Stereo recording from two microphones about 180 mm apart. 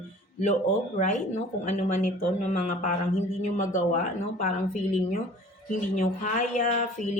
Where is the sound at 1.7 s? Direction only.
40° left (ahead or behind).